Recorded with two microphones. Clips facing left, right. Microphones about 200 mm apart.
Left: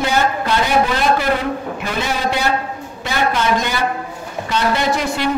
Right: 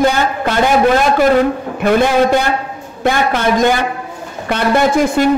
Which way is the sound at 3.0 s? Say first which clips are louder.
Right 4 dB; 55° right (ahead or behind).